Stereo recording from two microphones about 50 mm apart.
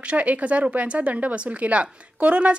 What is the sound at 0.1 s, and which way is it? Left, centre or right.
Speech, right.